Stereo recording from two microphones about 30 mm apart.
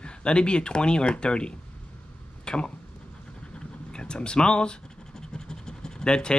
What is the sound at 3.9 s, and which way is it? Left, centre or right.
Speech, left.